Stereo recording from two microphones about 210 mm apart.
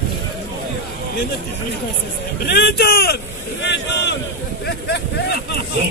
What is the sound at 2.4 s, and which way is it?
Speech, 50° left (ahead or behind).